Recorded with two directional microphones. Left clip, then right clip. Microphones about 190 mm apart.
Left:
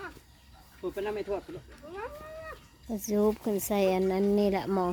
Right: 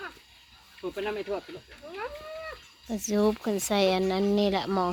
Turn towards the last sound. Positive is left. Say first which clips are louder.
# right 2 dB
turn(degrees=15)  # may be behind; listen again after turning